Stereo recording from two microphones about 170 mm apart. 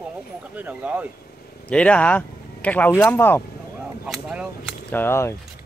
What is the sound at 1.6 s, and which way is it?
Speech, 5° left (ahead or behind).